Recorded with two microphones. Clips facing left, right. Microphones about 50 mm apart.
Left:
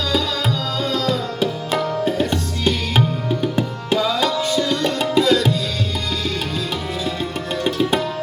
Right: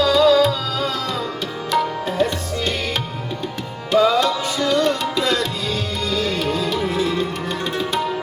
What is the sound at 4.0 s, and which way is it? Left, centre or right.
Tabla, right.